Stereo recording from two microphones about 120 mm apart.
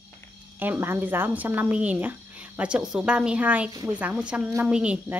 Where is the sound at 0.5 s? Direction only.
15° right (ahead or behind).